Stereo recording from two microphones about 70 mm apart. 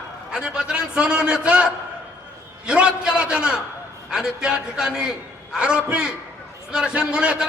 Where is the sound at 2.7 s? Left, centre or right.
Centre.